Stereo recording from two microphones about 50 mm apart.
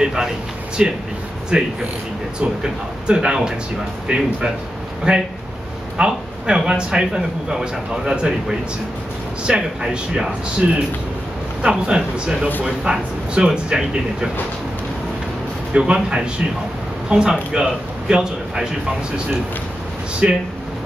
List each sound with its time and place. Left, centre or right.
0.0 s a man's voice: centre
3.1 s a man's voice: centre
13.3 s speech: centre
15.7 s a man's voice: centre
20.2 s a man's voice: centre